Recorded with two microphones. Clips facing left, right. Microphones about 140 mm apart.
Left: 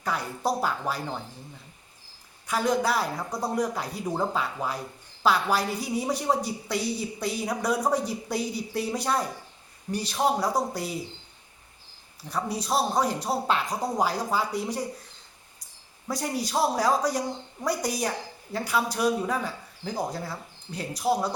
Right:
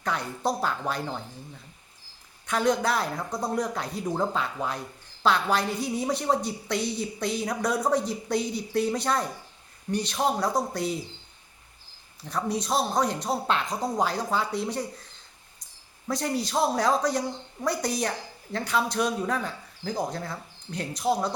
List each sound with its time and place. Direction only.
0.0 s a woman's voice: 5° left (ahead or behind)
2.5 s a woman's voice: 5° left (ahead or behind)
12.3 s a woman's voice: 5° left (ahead or behind)
16.0 s a woman's voice: 10° left (ahead or behind)